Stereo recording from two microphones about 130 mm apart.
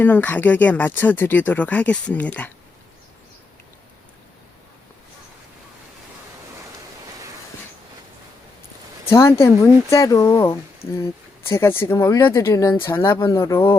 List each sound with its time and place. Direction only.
0.0 s speech: 15° left (ahead or behind)
9.0 s speech: 20° left (ahead or behind)